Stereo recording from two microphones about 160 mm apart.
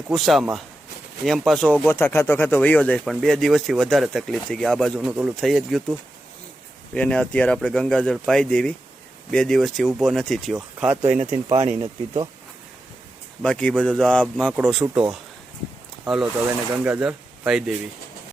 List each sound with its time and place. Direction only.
0.1 s speech: centre (ahead or behind)
1.9 s speech: 15° left (ahead or behind)
6.9 s speech: 5° left (ahead or behind)
11.5 s speech: 40° right (ahead or behind)
13.4 s speech: 5° left (ahead or behind)
16.0 s speech: 5° right (ahead or behind)